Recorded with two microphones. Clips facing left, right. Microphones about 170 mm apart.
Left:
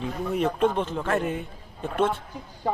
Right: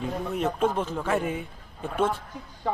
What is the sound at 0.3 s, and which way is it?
A man's voice, 5° right (ahead or behind).